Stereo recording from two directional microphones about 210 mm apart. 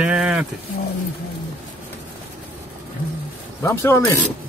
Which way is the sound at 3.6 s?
10° left (ahead or behind).